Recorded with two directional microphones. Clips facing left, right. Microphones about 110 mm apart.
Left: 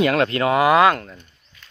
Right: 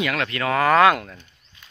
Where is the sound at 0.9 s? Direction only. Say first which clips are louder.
Even; centre (ahead or behind).